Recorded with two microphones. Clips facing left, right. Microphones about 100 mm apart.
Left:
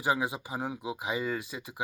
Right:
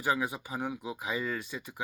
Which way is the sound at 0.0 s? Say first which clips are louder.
Left 1 dB; 20° left (ahead or behind).